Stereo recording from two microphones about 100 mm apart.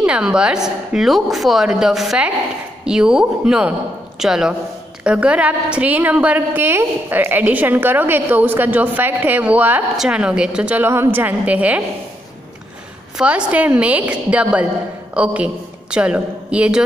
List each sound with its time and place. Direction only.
0.0 s a woman's voice: 10° right (ahead or behind)
13.2 s a woman's voice: 10° right (ahead or behind)